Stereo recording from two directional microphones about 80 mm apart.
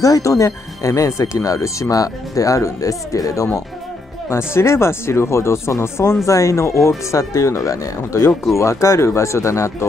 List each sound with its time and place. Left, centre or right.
0.0 s speech: left
4.3 s speech: left